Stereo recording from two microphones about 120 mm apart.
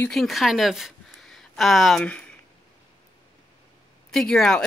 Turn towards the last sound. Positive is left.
turn(degrees=5)  # may be behind; listen again after turning